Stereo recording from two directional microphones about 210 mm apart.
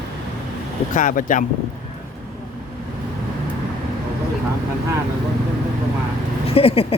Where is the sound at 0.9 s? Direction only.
40° left (ahead or behind).